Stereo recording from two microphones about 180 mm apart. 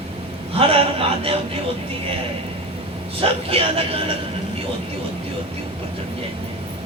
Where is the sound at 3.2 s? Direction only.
30° right (ahead or behind).